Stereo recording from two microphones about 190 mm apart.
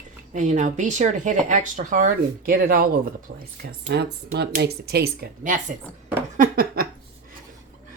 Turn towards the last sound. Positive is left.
turn(degrees=-50)  # may be behind; listen again after turning